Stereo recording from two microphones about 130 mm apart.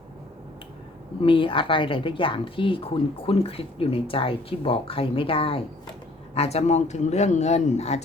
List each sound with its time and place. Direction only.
1.2 s a woman's voice: 45° left (ahead or behind)